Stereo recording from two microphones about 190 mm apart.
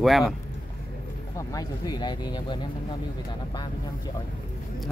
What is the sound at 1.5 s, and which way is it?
Speech, 20° left (ahead or behind).